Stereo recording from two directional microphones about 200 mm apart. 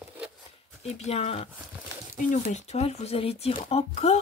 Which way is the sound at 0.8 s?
30° left (ahead or behind).